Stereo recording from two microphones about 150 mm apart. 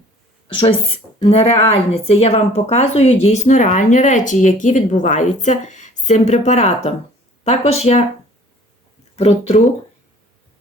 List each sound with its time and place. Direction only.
0.4 s a woman's voice: 35° left (ahead or behind)
9.1 s speech: 45° left (ahead or behind)